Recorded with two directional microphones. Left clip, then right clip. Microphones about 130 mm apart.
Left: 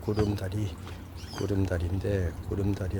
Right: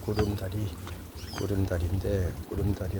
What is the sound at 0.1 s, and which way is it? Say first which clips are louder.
Speech: left 1 dB; 60° left (ahead or behind).